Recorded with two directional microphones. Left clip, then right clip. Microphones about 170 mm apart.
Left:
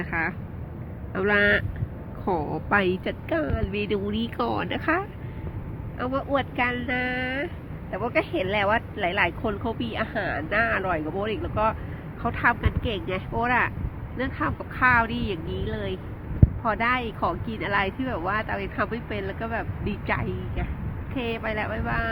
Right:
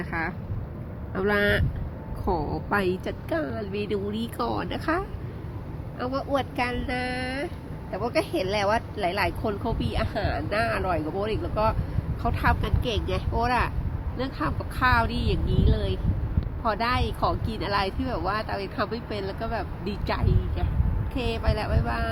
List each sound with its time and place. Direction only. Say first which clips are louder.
0.0 s speech: left 3 dB; 5° right (ahead or behind)